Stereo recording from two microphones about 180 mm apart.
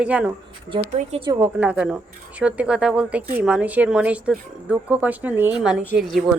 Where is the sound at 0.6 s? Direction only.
30° right (ahead or behind).